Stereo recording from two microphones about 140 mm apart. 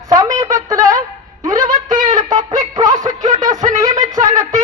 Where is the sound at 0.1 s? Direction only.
25° right (ahead or behind).